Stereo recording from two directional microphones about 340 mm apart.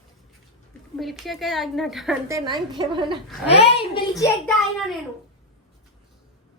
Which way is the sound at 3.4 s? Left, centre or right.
Centre.